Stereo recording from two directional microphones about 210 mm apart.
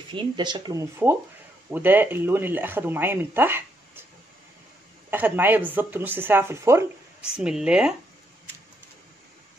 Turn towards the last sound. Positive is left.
turn(degrees=-5)  # may be behind; listen again after turning